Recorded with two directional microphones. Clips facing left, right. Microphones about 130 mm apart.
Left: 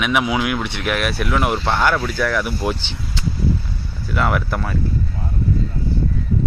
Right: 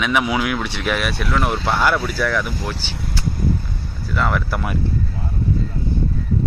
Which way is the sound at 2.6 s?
20° left (ahead or behind).